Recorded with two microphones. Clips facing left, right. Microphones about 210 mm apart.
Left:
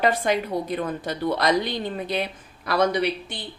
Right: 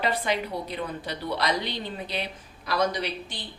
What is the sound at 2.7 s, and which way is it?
Speech, 60° left (ahead or behind).